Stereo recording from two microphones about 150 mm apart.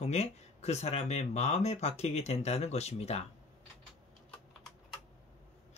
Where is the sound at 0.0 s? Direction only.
45° left (ahead or behind).